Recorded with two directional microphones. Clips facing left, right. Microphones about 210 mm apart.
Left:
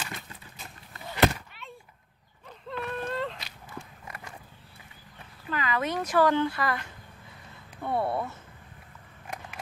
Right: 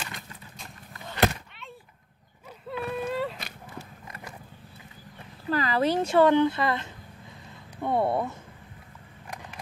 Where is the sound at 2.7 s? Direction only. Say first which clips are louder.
Right 3 dB; 10° right (ahead or behind).